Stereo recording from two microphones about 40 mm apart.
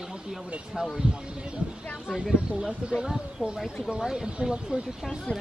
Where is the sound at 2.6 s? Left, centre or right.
Centre.